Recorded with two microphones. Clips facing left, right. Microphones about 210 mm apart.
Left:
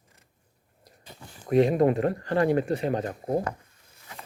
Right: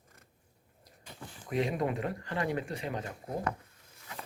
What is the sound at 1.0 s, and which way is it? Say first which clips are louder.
Speech: left 8 dB; 45° left (ahead or behind).